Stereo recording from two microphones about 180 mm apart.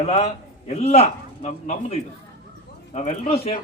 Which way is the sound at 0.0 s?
35° left (ahead or behind).